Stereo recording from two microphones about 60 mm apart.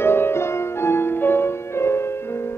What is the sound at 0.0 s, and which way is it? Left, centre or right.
Music, left.